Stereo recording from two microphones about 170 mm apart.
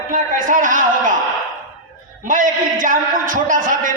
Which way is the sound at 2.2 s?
50° right (ahead or behind).